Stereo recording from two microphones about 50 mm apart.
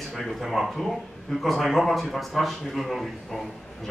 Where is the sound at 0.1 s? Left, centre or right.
Centre.